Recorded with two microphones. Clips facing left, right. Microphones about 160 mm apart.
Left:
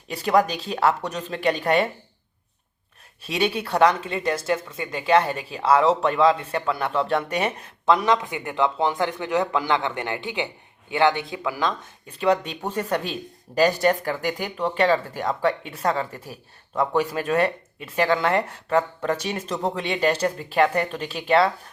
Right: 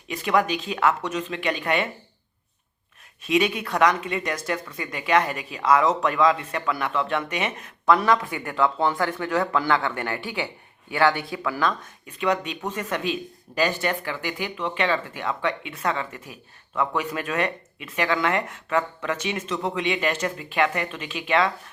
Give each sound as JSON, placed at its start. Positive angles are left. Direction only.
{"t": 0.1, "sound": "speech", "side_deg": 35}
{"t": 3.2, "sound": "speech", "side_deg": 35}
{"t": 7.9, "sound": "speech", "side_deg": 20}
{"t": 12.2, "sound": "speech", "side_deg": 35}